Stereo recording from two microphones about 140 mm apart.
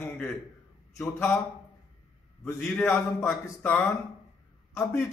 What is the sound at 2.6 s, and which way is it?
A man's voice, 5° left (ahead or behind).